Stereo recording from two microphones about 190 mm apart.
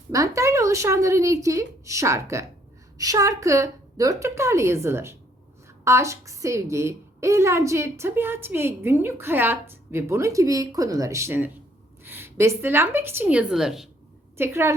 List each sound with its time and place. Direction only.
0.1 s a woman's voice: 15° right (ahead or behind)
14.3 s a woman's voice: 10° right (ahead or behind)